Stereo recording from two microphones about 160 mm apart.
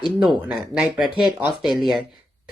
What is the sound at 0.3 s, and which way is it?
Speech, 5° right (ahead or behind).